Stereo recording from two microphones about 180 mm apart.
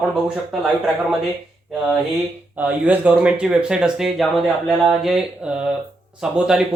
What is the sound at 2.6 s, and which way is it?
Speech, 10° right (ahead or behind).